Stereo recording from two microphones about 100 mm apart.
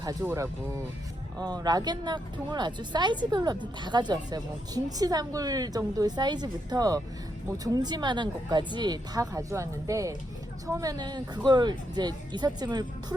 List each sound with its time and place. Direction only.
0.0 s speech: 40° right (ahead or behind)
1.5 s speech: 40° right (ahead or behind)